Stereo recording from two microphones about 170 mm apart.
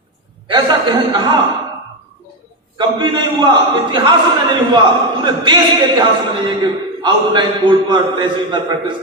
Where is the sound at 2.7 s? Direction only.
25° right (ahead or behind).